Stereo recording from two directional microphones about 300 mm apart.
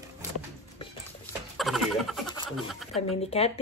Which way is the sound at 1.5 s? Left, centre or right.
Centre.